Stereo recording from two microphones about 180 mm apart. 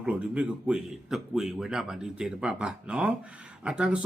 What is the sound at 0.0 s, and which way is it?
A man's voice, 5° right (ahead or behind).